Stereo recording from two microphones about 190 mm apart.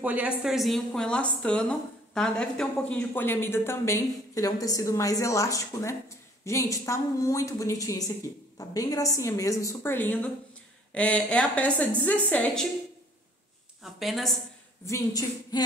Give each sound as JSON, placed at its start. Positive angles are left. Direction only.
{"t": 0.0, "sound": "a woman's voice", "side_deg": -10}
{"t": 13.9, "sound": "a woman's voice", "side_deg": 0}
{"t": 14.9, "sound": "a woman's voice", "side_deg": 20}